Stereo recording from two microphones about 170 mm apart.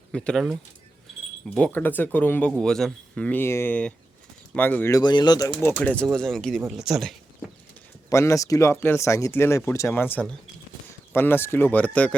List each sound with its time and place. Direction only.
0.1 s speech: 5° left (ahead or behind); by 5.5 s 25° left (ahead or behind)
5.8 s speech: 10° left (ahead or behind)
8.1 s speech: 20° left (ahead or behind)